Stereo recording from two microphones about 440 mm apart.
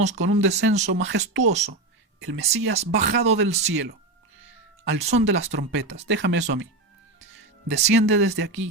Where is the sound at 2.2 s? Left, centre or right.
Right.